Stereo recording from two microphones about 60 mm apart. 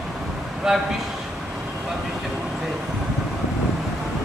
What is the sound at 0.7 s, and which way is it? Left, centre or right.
Speech, centre.